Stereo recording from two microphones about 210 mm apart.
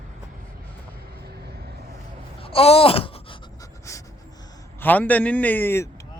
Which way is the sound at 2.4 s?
25° left (ahead or behind).